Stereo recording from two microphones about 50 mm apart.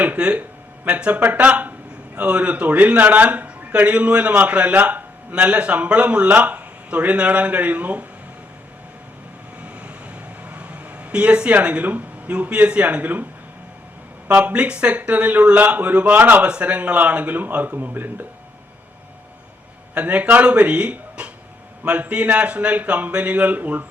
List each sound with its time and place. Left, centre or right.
0.2 s a man's voice: centre
9.6 s vehicle: right
10.5 s speech: right
14.3 s a man's voice: right
19.9 s a man's voice: right